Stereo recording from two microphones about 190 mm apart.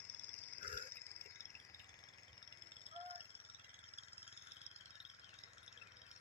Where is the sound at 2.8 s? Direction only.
30° left (ahead or behind).